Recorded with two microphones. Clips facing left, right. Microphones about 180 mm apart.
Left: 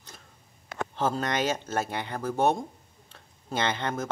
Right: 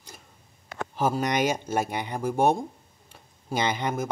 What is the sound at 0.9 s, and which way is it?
Speech, 10° right (ahead or behind).